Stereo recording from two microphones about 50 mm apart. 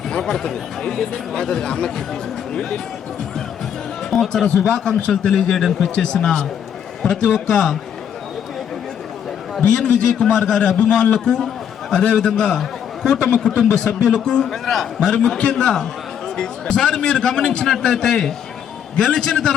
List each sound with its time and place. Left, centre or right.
0.1 s a man's voice: centre
4.1 s a man's voice: centre
9.6 s a man's voice: centre